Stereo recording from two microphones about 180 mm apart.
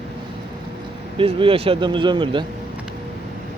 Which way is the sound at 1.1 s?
30° right (ahead or behind).